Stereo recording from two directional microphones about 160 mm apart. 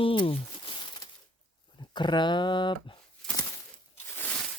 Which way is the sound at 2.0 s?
30° left (ahead or behind).